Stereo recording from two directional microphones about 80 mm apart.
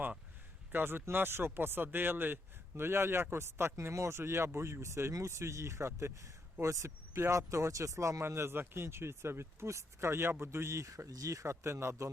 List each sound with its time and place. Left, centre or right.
0.7 s speech: right